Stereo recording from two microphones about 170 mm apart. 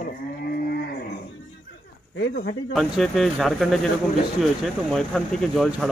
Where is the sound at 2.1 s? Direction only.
85° left.